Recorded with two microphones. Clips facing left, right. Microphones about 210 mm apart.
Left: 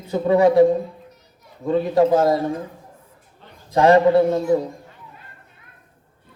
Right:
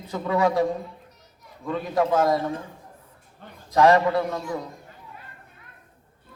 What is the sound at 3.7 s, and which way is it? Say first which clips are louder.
Speech: left 5 dB; 25° left (ahead or behind).